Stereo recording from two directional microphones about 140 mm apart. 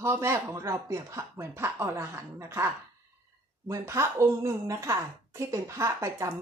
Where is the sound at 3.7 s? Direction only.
20° right (ahead or behind).